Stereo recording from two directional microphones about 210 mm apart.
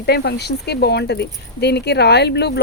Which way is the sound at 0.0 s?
50° left (ahead or behind).